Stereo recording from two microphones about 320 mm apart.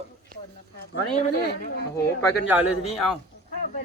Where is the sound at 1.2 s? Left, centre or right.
Left.